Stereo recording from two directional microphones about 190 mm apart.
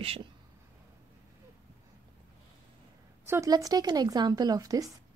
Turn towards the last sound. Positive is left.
turn(degrees=-20)  # may be behind; listen again after turning